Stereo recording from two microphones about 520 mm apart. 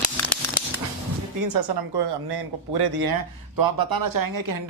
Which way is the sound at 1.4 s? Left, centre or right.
Right.